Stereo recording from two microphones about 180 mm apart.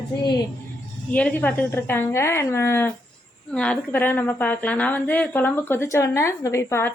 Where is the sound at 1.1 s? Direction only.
10° left (ahead or behind).